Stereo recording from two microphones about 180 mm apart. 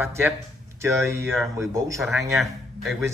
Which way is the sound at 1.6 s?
15° right (ahead or behind).